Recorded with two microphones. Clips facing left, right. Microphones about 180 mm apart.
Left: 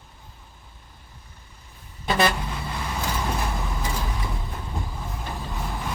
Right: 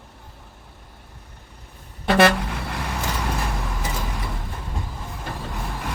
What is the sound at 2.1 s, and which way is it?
Vehicle, 75° right (ahead or behind).